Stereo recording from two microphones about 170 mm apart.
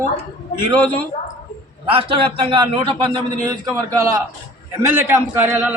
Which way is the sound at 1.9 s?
30° right (ahead or behind).